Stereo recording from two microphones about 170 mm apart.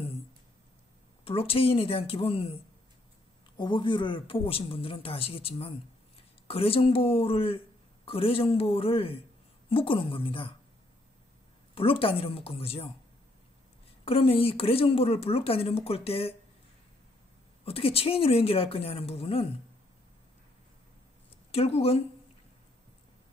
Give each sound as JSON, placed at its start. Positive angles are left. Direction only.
{"t": 1.2, "sound": "speech", "side_deg": 35}
{"t": 11.7, "sound": "speech", "side_deg": 30}
{"t": 14.0, "sound": "speech", "side_deg": 35}
{"t": 17.6, "sound": "speech", "side_deg": 35}
{"t": 21.5, "sound": "speech", "side_deg": 35}